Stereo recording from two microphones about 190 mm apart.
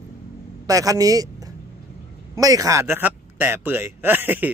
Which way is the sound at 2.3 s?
20° right (ahead or behind).